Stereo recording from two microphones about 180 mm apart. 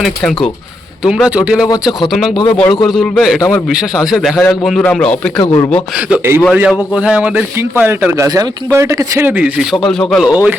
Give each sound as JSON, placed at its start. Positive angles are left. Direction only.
{"t": 0.0, "sound": "a man's voice", "side_deg": 5}
{"t": 2.3, "sound": "a man's voice", "side_deg": 25}
{"t": 2.8, "sound": "a man's voice", "side_deg": 0}
{"t": 5.4, "sound": "a man's voice", "side_deg": 20}
{"t": 6.1, "sound": "a man's voice", "side_deg": -15}